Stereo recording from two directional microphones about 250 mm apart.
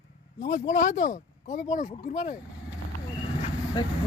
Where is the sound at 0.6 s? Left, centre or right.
Left.